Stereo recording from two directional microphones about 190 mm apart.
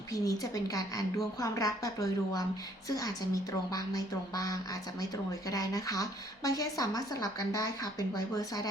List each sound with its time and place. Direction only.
0.1 s a woman's voice: 20° left (ahead or behind)